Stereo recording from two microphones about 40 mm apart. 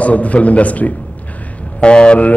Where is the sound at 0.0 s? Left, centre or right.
Left.